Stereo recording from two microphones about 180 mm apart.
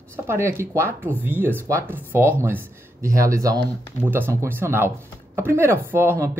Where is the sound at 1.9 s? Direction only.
10° right (ahead or behind).